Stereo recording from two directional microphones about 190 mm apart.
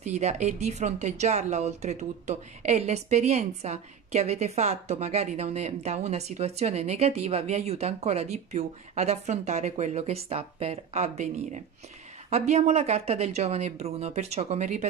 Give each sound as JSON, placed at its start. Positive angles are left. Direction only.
{"t": 0.0, "sound": "speech", "side_deg": -35}